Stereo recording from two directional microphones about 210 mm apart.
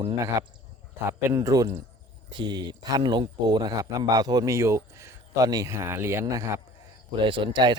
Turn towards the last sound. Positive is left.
turn(degrees=-20)  # may be behind; listen again after turning